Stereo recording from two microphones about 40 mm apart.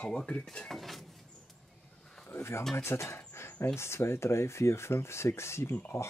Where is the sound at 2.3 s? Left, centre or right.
Left.